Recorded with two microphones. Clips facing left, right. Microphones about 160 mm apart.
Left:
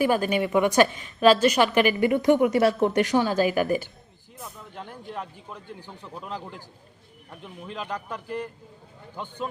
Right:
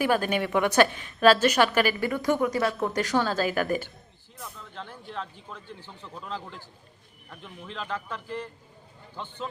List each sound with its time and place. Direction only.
0.0 s speech: 10° left (ahead or behind)
2.0 s speech: 20° left (ahead or behind)